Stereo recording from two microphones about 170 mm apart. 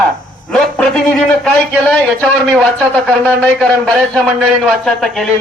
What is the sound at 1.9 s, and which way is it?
A man's voice, 5° left (ahead or behind).